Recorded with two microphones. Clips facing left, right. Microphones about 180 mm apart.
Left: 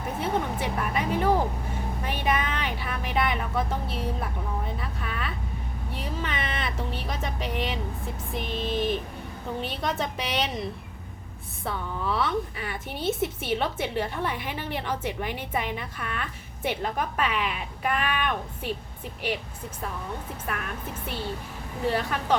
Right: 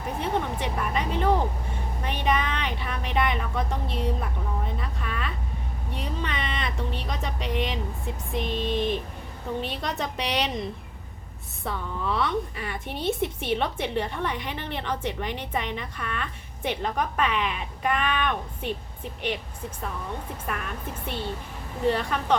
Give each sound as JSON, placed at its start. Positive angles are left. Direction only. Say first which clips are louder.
{"t": 0.2, "sound": "a woman's voice", "louder": "even", "side_deg": 5}
{"t": 4.8, "sound": "a sound", "louder": "right 1 dB", "side_deg": 5}
{"t": 5.9, "sound": "a woman's voice", "louder": "right 1 dB", "side_deg": 5}
{"t": 21.8, "sound": "a woman's voice", "louder": "right 2 dB", "side_deg": 5}